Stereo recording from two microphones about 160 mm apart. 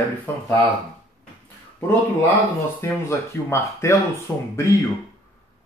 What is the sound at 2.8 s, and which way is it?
Speech, 15° left (ahead or behind).